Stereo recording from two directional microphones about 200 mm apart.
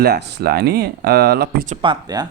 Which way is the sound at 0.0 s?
55° right (ahead or behind).